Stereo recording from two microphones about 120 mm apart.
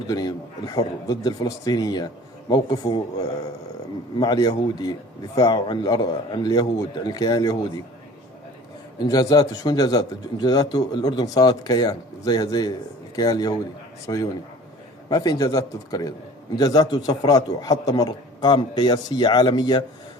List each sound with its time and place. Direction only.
0.1 s a man's voice: 35° left (ahead or behind)
9.0 s a man's voice: 30° left (ahead or behind)